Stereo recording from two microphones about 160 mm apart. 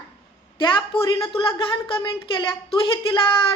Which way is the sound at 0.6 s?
30° left (ahead or behind).